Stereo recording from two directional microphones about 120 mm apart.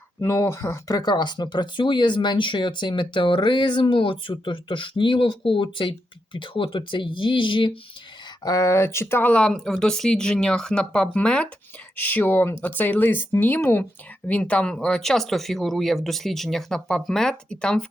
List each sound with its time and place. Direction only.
0.2 s speech: 20° left (ahead or behind); by 7.8 s 45° left (ahead or behind)
8.4 s speech: 25° left (ahead or behind); by 17.8 s 5° left (ahead or behind)